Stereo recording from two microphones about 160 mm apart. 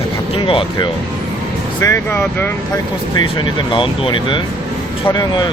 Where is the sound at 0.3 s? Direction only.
35° left (ahead or behind).